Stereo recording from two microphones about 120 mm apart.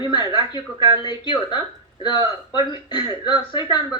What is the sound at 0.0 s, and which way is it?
Speech, 40° left (ahead or behind).